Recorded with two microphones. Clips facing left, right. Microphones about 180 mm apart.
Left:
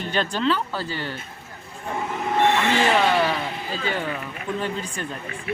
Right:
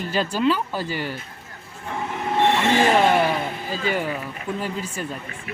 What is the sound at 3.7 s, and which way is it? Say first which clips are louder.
Speech: right 3 dB; 40° right (ahead or behind).